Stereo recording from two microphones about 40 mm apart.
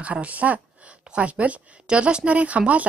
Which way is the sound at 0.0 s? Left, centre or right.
Right.